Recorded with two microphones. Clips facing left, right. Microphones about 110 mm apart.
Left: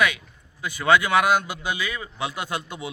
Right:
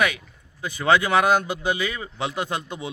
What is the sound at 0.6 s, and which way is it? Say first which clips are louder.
A man's voice: even; 35° right (ahead or behind).